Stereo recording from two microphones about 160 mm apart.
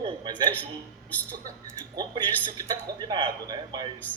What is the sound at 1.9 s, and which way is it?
A man's voice, 25° right (ahead or behind).